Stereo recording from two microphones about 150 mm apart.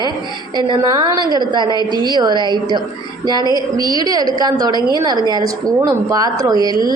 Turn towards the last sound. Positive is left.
turn(degrees=-25)  # may be behind; listen again after turning